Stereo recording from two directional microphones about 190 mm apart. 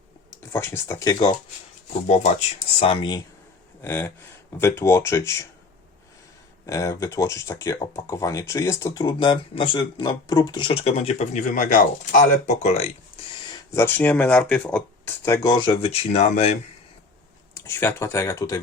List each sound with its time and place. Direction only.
0.5 s speech: 10° left (ahead or behind)
1.9 s speech: 40° left (ahead or behind)
2.7 s speech: 30° left (ahead or behind)
3.8 s speech: 15° left (ahead or behind)
6.7 s speech: 15° left (ahead or behind); by 12.9 s 35° left (ahead or behind)
13.7 s speech: 10° left (ahead or behind); by 16.6 s 35° left (ahead or behind)
17.5 s speech: 15° left (ahead or behind)